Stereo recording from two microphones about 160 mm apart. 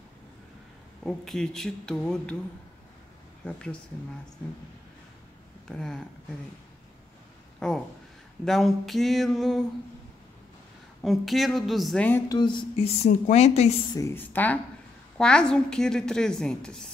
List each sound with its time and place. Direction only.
1.0 s speech: centre (ahead or behind)
3.4 s a woman's voice: 5° left (ahead or behind)
5.7 s speech: 5° left (ahead or behind)
7.6 s speech: 5° left (ahead or behind)
11.0 s speech: centre (ahead or behind)
12.3 s a woman's voice: 30° left (ahead or behind)
13.9 s a woman's voice: 15° left (ahead or behind)